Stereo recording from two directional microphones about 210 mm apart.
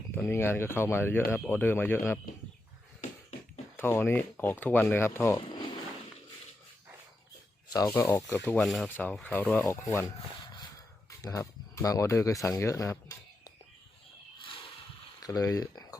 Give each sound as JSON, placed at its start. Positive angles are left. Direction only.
{"t": 0.2, "sound": "speech", "side_deg": 10}
{"t": 3.8, "sound": "speech", "side_deg": 10}
{"t": 7.7, "sound": "speech", "side_deg": 15}
{"t": 11.2, "sound": "speech", "side_deg": 15}
{"t": 14.3, "sound": "a sound", "side_deg": 25}
{"t": 15.2, "sound": "speech", "side_deg": 15}